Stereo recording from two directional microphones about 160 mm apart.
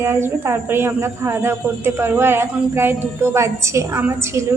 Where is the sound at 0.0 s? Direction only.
15° right (ahead or behind).